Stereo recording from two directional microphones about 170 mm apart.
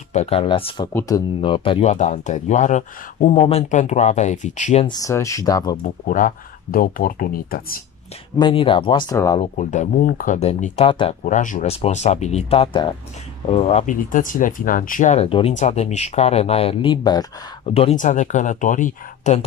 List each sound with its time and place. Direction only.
0.1 s speech: 40° left (ahead or behind)
0.9 s speech: 20° left (ahead or behind)
1.4 s speech: 30° left (ahead or behind)
4.8 s speech: 20° left (ahead or behind)
6.0 s speech: 55° left (ahead or behind)
8.4 s speech: 30° left (ahead or behind)
9.4 s speech: 45° left (ahead or behind)
11.2 s speech: 50° left (ahead or behind)
13.8 s speech: 50° left (ahead or behind); by 17.3 s 25° left (ahead or behind)
17.6 s speech: 35° left (ahead or behind)
17.9 s speech: 45° left (ahead or behind)